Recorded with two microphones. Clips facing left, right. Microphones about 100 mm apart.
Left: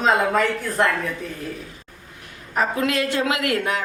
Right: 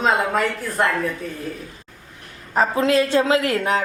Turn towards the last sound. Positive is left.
turn(degrees=-30)  # may be behind; listen again after turning